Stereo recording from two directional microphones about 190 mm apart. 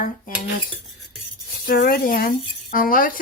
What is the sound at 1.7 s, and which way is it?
Speech, 50° left (ahead or behind).